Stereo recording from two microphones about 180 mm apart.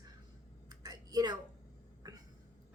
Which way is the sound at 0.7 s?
20° right (ahead or behind).